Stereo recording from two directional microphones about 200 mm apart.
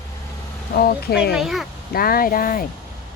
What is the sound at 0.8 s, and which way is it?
Speech, 50° left (ahead or behind).